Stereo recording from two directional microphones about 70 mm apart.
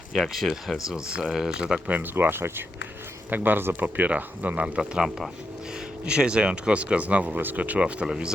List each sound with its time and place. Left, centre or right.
0.1 s speech: centre
0.5 s speech: centre
1.9 s speech: right
4.8 s speech: centre